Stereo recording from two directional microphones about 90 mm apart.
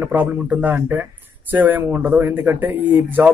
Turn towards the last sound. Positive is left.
turn(degrees=-20)  # may be behind; listen again after turning